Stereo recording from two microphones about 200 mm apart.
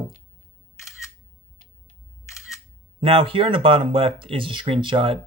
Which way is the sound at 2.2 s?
15° left (ahead or behind).